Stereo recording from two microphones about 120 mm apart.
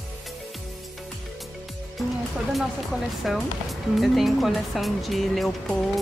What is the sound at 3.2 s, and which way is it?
Speech, centre (ahead or behind).